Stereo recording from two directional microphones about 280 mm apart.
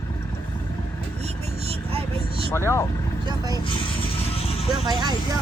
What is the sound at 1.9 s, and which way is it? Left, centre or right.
Vehicle, right.